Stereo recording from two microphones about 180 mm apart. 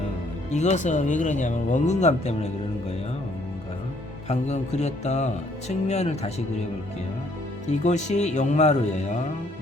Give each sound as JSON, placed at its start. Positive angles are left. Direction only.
{"t": 0.5, "sound": "speech", "side_deg": 40}
{"t": 4.3, "sound": "speech", "side_deg": 40}
{"t": 7.7, "sound": "speech", "side_deg": 40}